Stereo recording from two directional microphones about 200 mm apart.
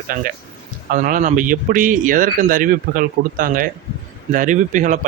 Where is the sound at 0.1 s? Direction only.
45° right (ahead or behind).